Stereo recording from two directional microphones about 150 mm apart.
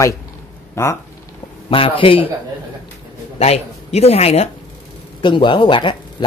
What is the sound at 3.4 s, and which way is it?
Speech, 45° left (ahead or behind).